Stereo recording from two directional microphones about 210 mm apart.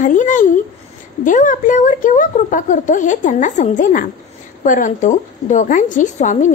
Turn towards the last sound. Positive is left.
turn(degrees=35)  # may be behind; listen again after turning